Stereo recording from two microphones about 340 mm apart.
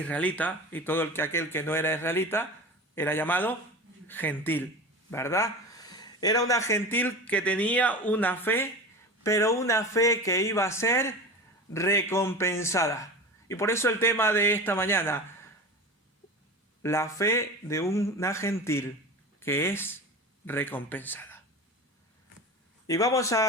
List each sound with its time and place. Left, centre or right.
0.0 s speech: centre
16.8 s speech: centre
22.9 s speech: centre